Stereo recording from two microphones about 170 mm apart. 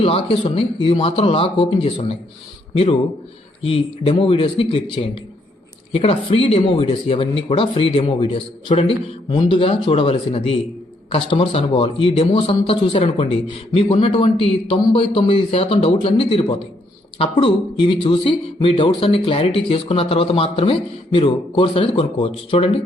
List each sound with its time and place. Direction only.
0.0 s a man's voice: 30° left (ahead or behind)